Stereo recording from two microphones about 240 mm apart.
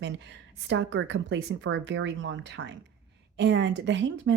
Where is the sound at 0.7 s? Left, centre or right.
Right.